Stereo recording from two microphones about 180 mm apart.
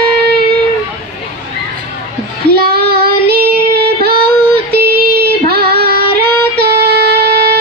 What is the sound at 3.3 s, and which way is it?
Female singing, 60° right (ahead or behind).